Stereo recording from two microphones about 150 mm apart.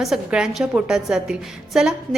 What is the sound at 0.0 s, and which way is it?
A woman's voice, 5° right (ahead or behind).